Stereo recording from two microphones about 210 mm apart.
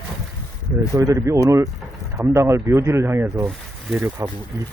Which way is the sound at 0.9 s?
15° right (ahead or behind).